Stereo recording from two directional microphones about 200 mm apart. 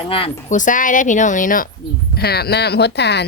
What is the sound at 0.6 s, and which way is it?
A woman's voice, 40° left (ahead or behind).